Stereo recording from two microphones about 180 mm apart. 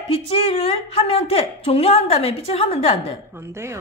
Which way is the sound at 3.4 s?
15° right (ahead or behind).